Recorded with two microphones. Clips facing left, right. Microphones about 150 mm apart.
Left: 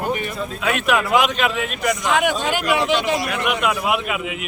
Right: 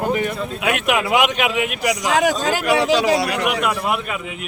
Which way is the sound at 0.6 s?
15° right (ahead or behind).